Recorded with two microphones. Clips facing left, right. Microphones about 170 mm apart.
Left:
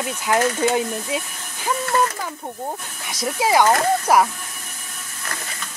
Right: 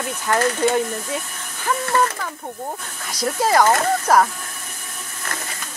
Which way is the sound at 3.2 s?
Centre (ahead or behind).